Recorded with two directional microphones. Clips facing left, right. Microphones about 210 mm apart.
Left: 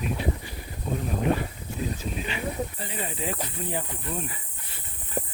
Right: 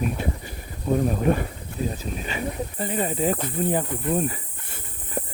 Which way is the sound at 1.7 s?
55° right (ahead or behind).